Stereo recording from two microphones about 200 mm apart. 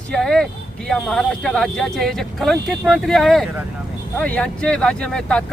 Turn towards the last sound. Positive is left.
turn(degrees=5)  # may be behind; listen again after turning